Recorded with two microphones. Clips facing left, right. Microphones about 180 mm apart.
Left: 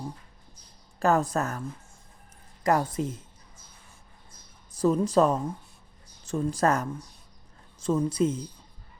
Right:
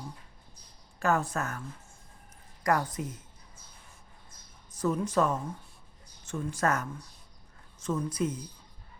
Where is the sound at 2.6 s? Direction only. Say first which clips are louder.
Left 4 dB; 25° left (ahead or behind).